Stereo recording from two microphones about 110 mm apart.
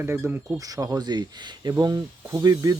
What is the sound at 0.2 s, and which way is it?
Speech, 20° right (ahead or behind).